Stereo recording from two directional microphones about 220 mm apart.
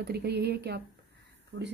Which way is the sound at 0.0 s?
50° right (ahead or behind).